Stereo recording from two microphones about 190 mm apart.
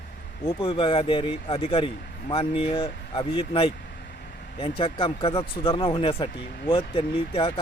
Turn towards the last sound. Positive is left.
turn(degrees=25)  # may be behind; listen again after turning